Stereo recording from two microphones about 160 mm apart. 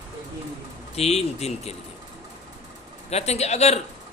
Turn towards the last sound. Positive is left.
turn(degrees=45)  # may be behind; listen again after turning